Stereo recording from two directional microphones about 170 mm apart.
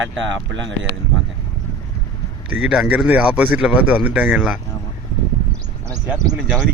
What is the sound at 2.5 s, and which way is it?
Speech, 5° right (ahead or behind).